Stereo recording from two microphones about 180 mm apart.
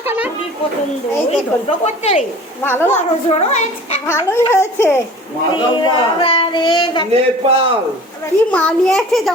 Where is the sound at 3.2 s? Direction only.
35° left (ahead or behind).